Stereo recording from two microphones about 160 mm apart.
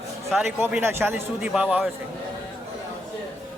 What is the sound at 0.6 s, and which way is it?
A man's voice, 10° right (ahead or behind).